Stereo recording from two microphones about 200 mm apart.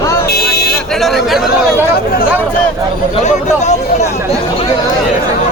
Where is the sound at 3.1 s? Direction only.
35° left (ahead or behind).